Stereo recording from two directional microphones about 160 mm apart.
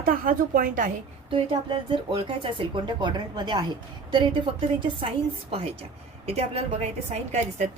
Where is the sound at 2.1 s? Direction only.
30° right (ahead or behind).